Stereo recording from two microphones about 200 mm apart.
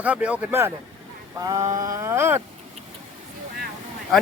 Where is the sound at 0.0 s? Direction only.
5° right (ahead or behind).